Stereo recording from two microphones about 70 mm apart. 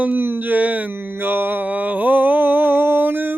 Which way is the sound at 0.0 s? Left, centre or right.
Right.